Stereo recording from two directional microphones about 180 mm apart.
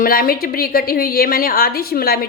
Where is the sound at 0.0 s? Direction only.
55° left (ahead or behind).